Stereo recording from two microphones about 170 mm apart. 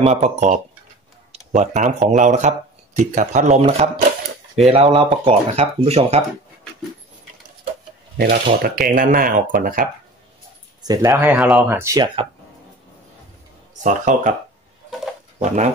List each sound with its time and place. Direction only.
0.0 s speech: 40° right (ahead or behind)
8.2 s speech: 60° right (ahead or behind)
10.8 s speech: 20° right (ahead or behind); by 11.6 s 5° right (ahead or behind)
11.6 s speech: 15° right (ahead or behind)
13.8 s speech: 45° right (ahead or behind)